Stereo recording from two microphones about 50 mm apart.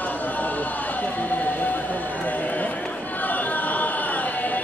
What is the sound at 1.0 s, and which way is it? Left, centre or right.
Run, left.